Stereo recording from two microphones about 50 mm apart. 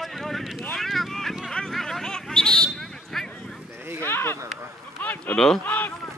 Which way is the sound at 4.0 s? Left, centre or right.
Left.